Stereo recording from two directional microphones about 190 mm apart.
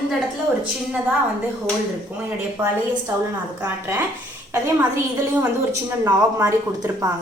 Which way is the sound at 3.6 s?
10° right (ahead or behind).